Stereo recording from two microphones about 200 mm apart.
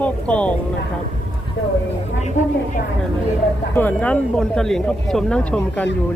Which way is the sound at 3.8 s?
10° left (ahead or behind).